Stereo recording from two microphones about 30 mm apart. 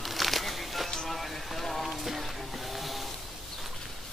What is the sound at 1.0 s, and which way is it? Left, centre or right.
Music, centre.